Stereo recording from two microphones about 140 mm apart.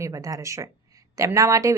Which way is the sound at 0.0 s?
25° right (ahead or behind).